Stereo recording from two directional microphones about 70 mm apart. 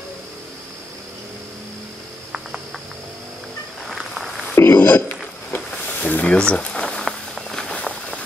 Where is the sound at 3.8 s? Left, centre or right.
Centre.